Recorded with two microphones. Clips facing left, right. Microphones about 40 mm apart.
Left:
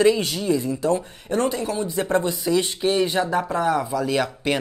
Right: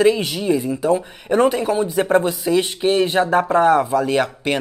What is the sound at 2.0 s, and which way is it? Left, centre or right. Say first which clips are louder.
Speech: right 4 dB; centre.